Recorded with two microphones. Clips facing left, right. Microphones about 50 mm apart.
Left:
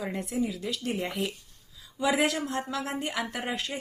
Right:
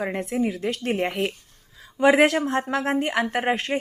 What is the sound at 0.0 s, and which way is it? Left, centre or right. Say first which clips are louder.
A woman's voice: right 6 dB; right.